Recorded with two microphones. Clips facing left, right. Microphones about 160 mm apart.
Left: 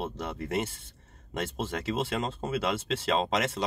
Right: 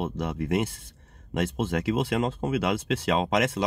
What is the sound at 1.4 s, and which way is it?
Speech, 30° left (ahead or behind).